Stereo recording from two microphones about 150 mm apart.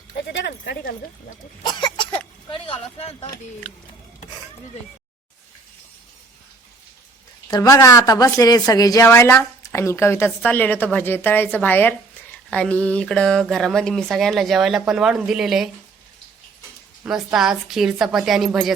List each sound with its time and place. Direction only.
0.4 s speech: 90° left
1.6 s cough: 30° left (ahead or behind)
2.5 s speech: 40° left (ahead or behind)
7.5 s a woman's voice: 25° left (ahead or behind); by 15.7 s centre (ahead or behind)
17.1 s speech: 5° right (ahead or behind)